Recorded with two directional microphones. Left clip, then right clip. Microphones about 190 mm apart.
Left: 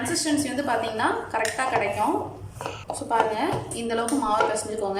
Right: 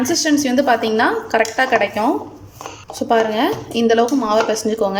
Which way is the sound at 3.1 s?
50° right (ahead or behind).